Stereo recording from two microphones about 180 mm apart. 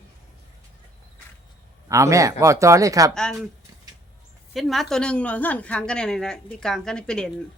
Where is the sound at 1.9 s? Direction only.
15° right (ahead or behind).